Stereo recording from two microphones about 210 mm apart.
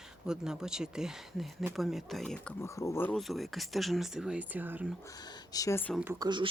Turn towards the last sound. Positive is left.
turn(degrees=-20)  # may be behind; listen again after turning